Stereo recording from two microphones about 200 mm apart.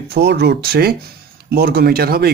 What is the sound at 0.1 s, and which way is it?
Speech, 55° right (ahead or behind).